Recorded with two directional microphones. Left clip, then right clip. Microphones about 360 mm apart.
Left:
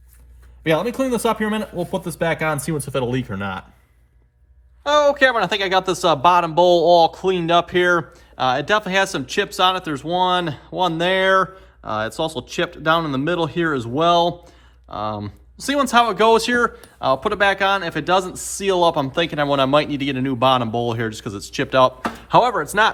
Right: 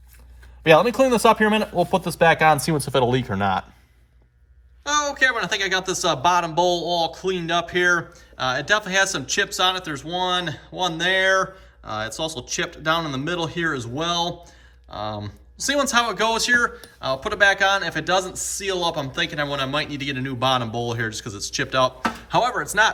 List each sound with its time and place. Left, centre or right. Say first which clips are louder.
0.6 s speech: right 4 dB; centre
2.9 s speech: right 3 dB; right
4.8 s speech: left 6 dB; centre